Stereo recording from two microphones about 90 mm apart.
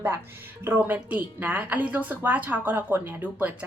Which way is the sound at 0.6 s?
20° right (ahead or behind).